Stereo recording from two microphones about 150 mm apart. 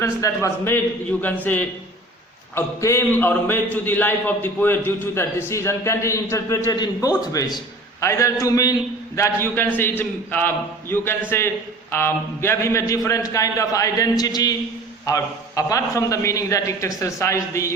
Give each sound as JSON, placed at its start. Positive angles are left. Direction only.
{"t": 0.0, "sound": "a man's voice", "side_deg": 20}